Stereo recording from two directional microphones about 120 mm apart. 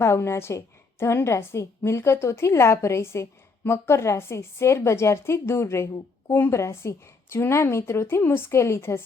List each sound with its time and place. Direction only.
0.0 s a woman's voice: 20° left (ahead or behind)